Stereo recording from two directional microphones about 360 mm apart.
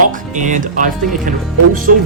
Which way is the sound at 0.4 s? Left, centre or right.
Right.